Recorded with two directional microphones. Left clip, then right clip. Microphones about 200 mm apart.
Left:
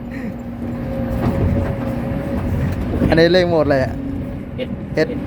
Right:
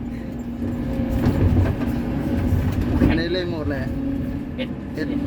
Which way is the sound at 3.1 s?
45° left (ahead or behind).